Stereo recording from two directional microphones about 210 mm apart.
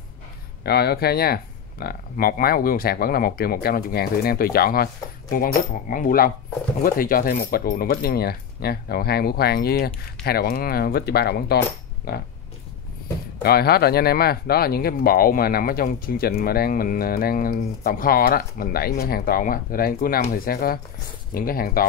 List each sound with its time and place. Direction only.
0.7 s speech: 50° left (ahead or behind)
13.4 s speech: 45° left (ahead or behind)